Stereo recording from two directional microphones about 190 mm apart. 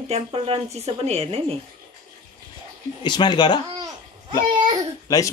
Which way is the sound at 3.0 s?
25° left (ahead or behind).